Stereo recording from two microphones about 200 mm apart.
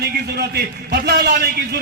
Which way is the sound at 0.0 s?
55° right (ahead or behind).